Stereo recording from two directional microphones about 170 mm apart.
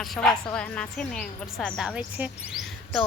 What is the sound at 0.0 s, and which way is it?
A woman's voice, 5° left (ahead or behind).